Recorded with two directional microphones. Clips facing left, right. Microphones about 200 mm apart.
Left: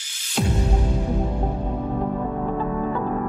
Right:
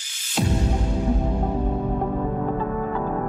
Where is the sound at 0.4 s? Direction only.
Centre (ahead or behind).